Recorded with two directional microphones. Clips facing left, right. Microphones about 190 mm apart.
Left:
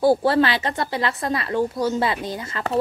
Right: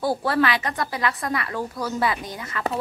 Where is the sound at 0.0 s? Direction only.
30° left (ahead or behind).